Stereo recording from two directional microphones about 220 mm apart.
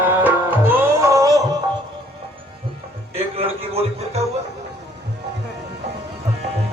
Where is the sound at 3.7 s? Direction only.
30° right (ahead or behind).